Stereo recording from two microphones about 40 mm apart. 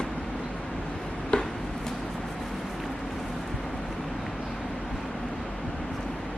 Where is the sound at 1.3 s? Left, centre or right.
Left.